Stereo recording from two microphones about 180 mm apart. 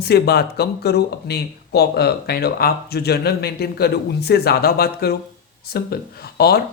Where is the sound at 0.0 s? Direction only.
60° left (ahead or behind).